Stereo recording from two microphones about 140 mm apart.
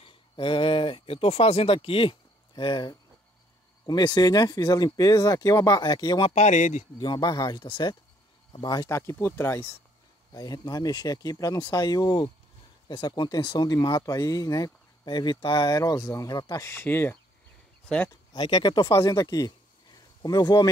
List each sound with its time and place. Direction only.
0.0 s speech: 40° left (ahead or behind)
6.2 s speech: 50° left (ahead or behind)
7.0 s speech: 30° left (ahead or behind)
10.3 s speech: 25° left (ahead or behind); by 18.1 s 10° left (ahead or behind)
18.1 s speech: 30° left (ahead or behind)